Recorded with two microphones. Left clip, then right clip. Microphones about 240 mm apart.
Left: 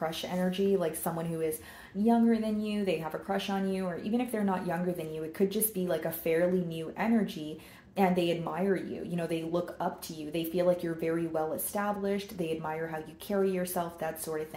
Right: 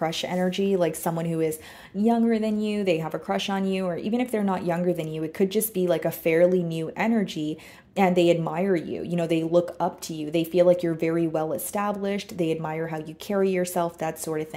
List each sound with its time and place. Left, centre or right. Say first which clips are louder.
0.0 s speech: right 7 dB; right